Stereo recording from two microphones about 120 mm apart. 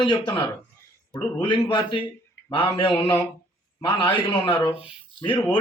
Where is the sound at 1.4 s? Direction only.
45° left (ahead or behind).